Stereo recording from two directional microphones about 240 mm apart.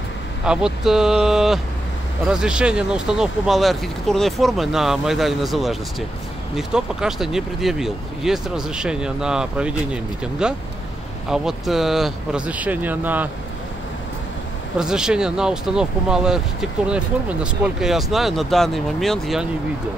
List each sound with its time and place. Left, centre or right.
0.5 s speech: centre
14.8 s speech: centre